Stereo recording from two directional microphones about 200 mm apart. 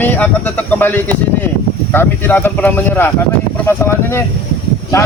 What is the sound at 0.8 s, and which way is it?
A man's voice, 10° left (ahead or behind).